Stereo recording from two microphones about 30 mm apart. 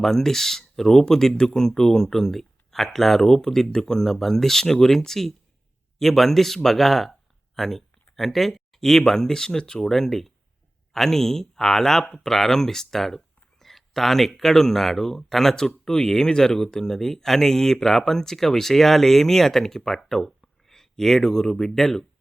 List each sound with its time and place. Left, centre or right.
0.0 s speech: centre
9.8 s speech: centre